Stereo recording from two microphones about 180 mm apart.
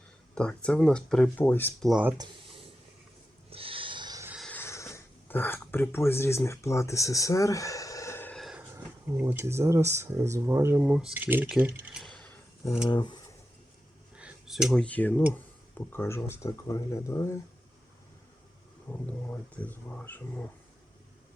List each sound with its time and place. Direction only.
0.3 s speech: 5° left (ahead or behind)
1.9 s speech: 5° right (ahead or behind)
2.1 s speech: 25° right (ahead or behind)
3.5 s a sound: 30° right (ahead or behind)
4.3 s music: centre (ahead or behind)
4.5 s a sound: 15° left (ahead or behind)
8.7 s speech: 15° right (ahead or behind); by 12.3 s 5° left (ahead or behind)
12.9 s speech: 25° left (ahead or behind)
14.2 s speech: 5° right (ahead or behind); by 17.4 s 15° left (ahead or behind)
18.9 s speech: 10° left (ahead or behind)